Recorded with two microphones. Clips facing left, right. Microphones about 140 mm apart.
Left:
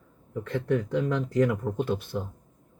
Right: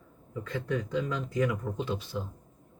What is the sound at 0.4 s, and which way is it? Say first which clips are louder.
Speech: left 6 dB; 65° left (ahead or behind).